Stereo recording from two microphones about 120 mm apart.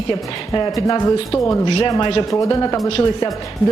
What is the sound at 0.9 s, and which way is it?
Speech, 30° left (ahead or behind).